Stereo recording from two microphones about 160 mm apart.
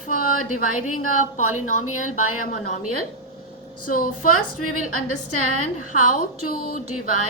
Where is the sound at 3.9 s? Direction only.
60° left (ahead or behind).